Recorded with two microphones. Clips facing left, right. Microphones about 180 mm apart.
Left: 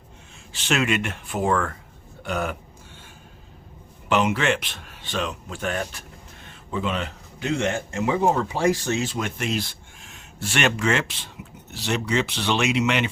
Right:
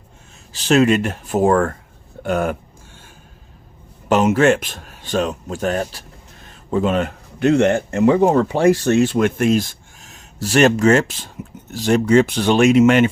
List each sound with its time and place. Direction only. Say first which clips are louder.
0.5 s speech: right 9 dB; 40° right (ahead or behind)
4.1 s speech: right 7 dB; 45° right (ahead or behind)